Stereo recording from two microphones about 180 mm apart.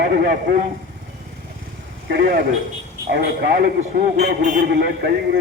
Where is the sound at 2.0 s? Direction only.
55° right (ahead or behind).